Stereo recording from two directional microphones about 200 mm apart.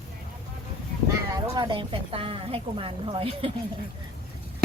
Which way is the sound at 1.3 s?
20° right (ahead or behind).